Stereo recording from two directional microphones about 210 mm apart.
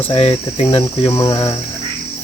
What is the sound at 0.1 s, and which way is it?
Cricket, 30° left (ahead or behind).